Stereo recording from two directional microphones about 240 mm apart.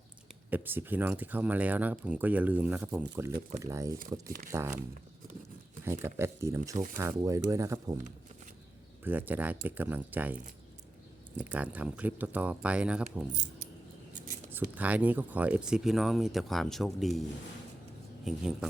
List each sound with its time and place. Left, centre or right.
0.5 s speech: centre
4.3 s speech: right
5.8 s speech: centre
9.0 s speech: centre
13.3 s speech: right
14.5 s speech: centre
18.3 s speech: centre